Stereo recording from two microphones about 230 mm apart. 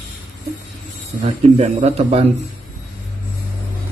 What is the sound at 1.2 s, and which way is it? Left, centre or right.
Speech, right.